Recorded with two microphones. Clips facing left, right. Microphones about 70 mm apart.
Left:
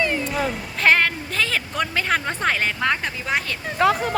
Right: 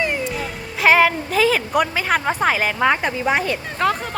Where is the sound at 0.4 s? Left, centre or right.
Centre.